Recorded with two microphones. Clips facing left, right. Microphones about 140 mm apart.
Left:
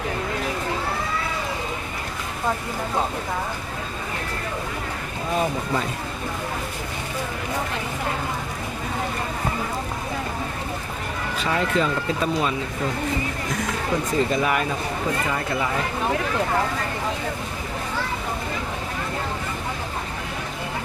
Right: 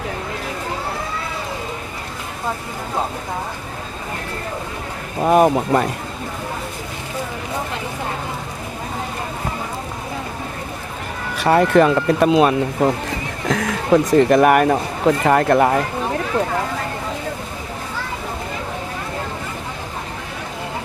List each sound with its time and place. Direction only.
5.2 s speech: 65° right (ahead or behind)
11.4 s speech: 65° right (ahead or behind)
13.5 s speech: 85° right; by 15.8 s 60° right (ahead or behind)